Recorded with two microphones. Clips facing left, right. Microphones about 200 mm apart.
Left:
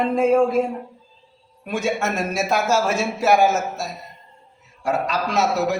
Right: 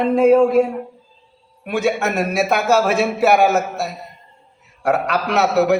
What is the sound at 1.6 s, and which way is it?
A man's voice, 60° right (ahead or behind).